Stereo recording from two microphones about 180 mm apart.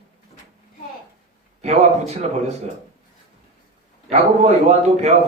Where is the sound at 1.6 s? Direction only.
35° right (ahead or behind).